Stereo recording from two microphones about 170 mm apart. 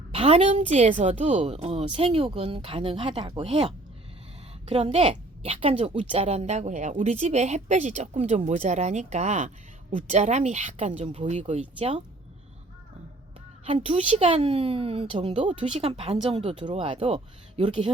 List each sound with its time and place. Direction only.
0.1 s a woman's voice: 35° right (ahead or behind)
13.7 s a woman's voice: 35° right (ahead or behind)